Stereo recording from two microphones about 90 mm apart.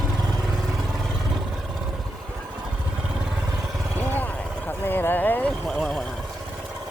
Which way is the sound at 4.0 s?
20° left (ahead or behind).